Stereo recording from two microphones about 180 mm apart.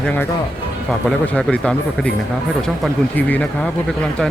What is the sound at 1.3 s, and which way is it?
Speech, 5° left (ahead or behind).